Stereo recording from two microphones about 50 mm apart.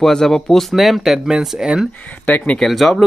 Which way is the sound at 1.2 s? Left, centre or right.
Centre.